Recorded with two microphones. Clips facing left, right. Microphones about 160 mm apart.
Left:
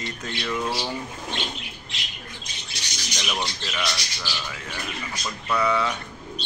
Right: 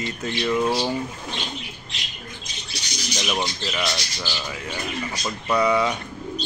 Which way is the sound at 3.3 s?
20° right (ahead or behind).